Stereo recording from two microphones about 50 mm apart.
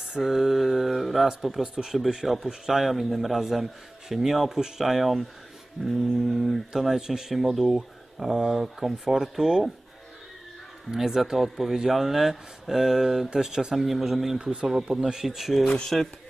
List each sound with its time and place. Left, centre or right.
0.2 s mantra: centre
1.4 s a man's voice: centre
10.9 s a man's voice: centre
13.8 s a man's voice: centre
14.3 s a man's voice: centre
15.6 s speech: centre